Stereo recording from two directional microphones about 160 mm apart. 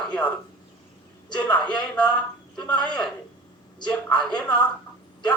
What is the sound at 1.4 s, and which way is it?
A man's voice, 10° left (ahead or behind).